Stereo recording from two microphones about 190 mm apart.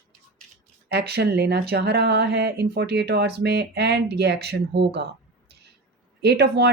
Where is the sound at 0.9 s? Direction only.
60° right (ahead or behind).